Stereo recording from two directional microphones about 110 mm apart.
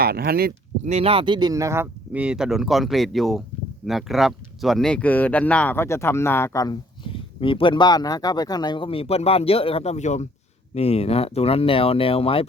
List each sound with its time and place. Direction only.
0.9 s speech: 65° right (ahead or behind); by 1.9 s 25° right (ahead or behind)
2.1 s speech: 10° right (ahead or behind); by 6.7 s 30° left (ahead or behind)
7.0 s speech: 55° left (ahead or behind); by 10.2 s 90° left
10.8 s speech: 70° left (ahead or behind)